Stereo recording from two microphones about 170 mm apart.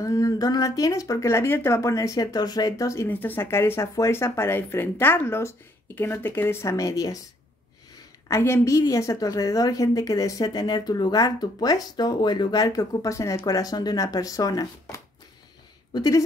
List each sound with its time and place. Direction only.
0.0 s speech: 20° left (ahead or behind)
8.3 s a woman's voice: 15° left (ahead or behind)